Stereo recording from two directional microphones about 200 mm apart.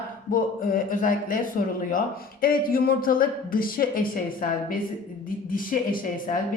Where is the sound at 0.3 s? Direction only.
45° left (ahead or behind).